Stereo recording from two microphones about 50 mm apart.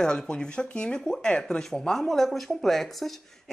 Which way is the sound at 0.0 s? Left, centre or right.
Centre.